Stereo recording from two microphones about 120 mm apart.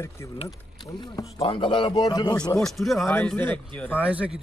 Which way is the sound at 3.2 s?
15° left (ahead or behind).